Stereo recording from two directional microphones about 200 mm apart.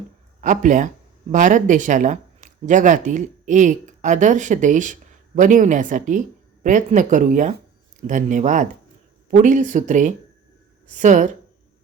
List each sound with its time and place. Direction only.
0.4 s speech: 40° right (ahead or behind)